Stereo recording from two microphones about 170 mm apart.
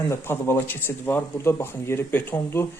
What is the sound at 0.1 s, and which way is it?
Speech, 15° left (ahead or behind).